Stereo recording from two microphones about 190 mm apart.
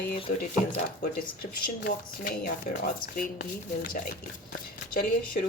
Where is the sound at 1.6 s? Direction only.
50° left (ahead or behind).